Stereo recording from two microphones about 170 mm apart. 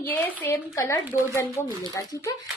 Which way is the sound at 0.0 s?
10° left (ahead or behind).